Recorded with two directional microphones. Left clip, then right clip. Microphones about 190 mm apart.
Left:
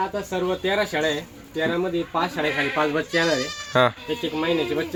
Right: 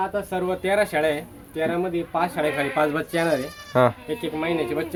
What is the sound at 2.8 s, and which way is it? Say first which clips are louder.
Speech: left 1 dB; 30° right (ahead or behind).